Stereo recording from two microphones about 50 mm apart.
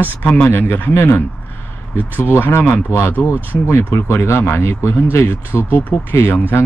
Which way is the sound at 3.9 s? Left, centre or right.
Left.